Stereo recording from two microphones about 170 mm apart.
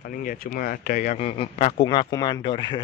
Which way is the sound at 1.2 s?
35° left (ahead or behind).